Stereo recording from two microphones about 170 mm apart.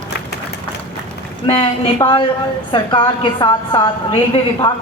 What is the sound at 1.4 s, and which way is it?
A woman's voice, 30° left (ahead or behind).